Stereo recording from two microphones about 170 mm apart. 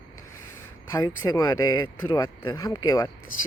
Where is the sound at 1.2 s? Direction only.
20° left (ahead or behind).